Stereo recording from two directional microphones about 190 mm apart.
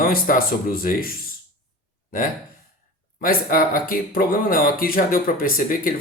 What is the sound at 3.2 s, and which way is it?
Speech, 50° left (ahead or behind).